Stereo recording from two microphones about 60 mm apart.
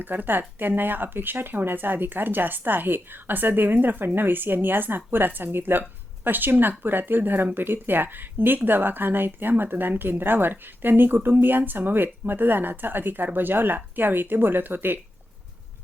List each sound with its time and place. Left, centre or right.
0.0 s speech: right